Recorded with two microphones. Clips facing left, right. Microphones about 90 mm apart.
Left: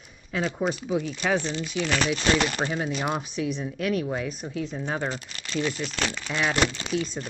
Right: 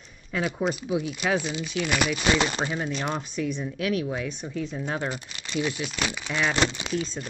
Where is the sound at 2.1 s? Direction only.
20° right (ahead or behind).